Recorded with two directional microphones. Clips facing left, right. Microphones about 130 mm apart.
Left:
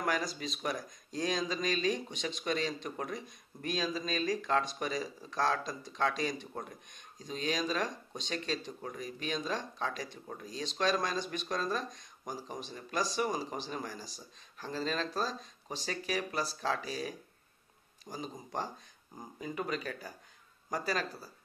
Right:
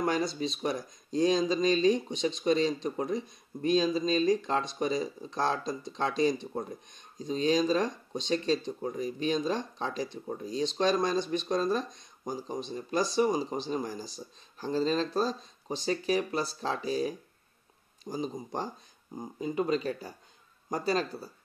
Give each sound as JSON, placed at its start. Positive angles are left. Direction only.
{"t": 0.0, "sound": "speech", "side_deg": -25}